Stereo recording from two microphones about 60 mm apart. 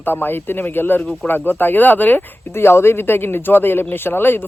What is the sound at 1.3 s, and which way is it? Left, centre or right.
Speech, left.